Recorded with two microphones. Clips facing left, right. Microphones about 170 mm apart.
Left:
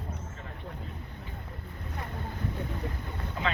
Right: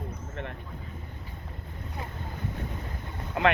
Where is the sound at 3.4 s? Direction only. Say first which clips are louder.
Right 8 dB; 65° right (ahead or behind).